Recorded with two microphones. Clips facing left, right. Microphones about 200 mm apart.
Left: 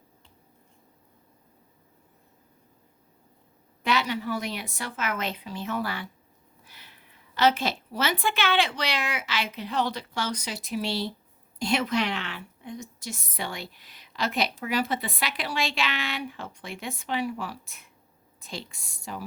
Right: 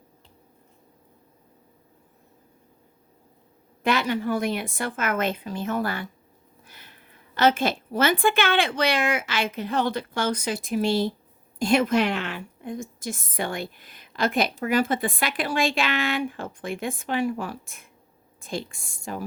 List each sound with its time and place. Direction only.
3.8 s a woman's voice: 50° right (ahead or behind)